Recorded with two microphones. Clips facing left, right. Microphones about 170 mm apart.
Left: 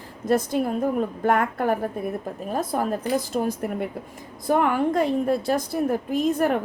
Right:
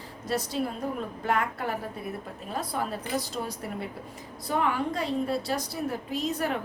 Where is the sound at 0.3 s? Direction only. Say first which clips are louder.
Left 8 dB; 50° left (ahead or behind).